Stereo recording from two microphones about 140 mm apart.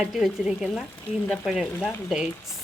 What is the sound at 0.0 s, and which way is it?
Speech, 5° right (ahead or behind).